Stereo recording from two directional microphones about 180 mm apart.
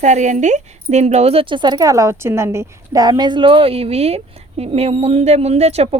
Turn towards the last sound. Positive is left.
turn(degrees=-35)  # may be behind; listen again after turning